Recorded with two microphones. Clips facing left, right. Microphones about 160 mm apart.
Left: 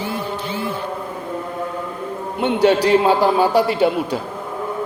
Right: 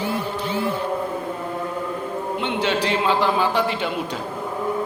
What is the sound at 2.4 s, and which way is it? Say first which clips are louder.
A man's voice: left 9 dB; 40° left (ahead or behind).